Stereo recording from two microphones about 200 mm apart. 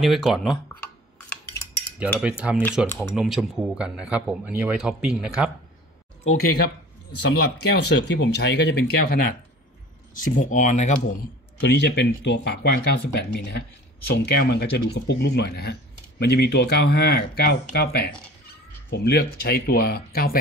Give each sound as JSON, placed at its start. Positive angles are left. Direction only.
{"t": 0.0, "sound": "a man's voice", "side_deg": 0}
{"t": 1.1, "sound": "cutlery", "side_deg": 10}
{"t": 2.0, "sound": "a man's voice", "side_deg": 0}
{"t": 2.9, "sound": "speech", "side_deg": 10}
{"t": 3.2, "sound": "a man's voice", "side_deg": -5}
{"t": 7.2, "sound": "speech", "side_deg": 60}
{"t": 11.6, "sound": "speech", "side_deg": 60}